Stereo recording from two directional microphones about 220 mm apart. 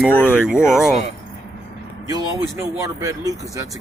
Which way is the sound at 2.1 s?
15° right (ahead or behind).